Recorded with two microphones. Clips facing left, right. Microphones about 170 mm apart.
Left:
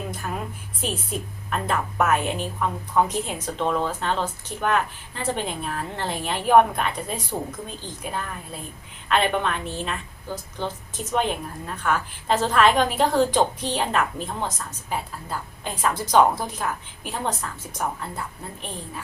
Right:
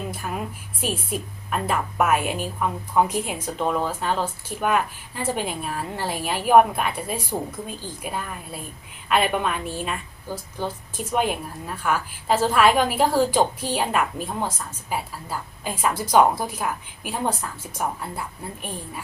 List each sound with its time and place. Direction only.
0.1 s a woman's voice: 5° right (ahead or behind)